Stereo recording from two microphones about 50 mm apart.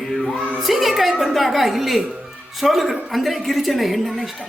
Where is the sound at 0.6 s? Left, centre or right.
Centre.